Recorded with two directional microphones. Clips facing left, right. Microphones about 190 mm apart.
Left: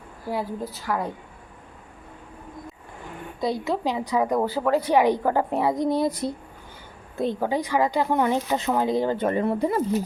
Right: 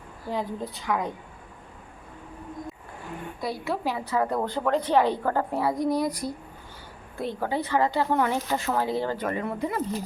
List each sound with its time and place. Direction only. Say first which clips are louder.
0.3 s a woman's voice: left 2 dB; 5° left (ahead or behind)
3.4 s a woman's voice: left 4 dB; 20° left (ahead or behind)
9.2 s speech: left 6 dB; 30° left (ahead or behind)